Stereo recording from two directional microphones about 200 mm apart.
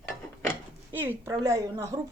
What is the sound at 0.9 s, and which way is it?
A woman's voice, 10° right (ahead or behind).